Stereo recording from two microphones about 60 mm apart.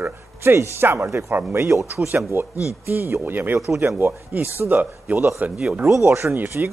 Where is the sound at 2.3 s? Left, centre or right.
Right.